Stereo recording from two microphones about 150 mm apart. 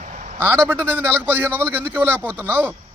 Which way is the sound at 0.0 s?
60° right (ahead or behind).